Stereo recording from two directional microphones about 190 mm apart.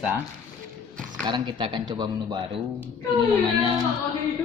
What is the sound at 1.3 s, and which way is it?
A man's voice, 25° right (ahead or behind).